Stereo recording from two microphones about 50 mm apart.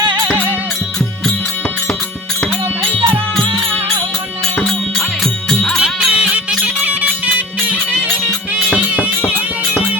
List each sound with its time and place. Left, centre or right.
4.6 s music: centre
5.8 s music: right
6.8 s music: right